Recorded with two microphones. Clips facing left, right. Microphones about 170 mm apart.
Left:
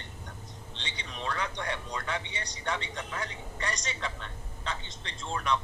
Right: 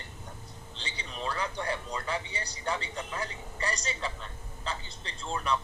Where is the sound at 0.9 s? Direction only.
5° right (ahead or behind).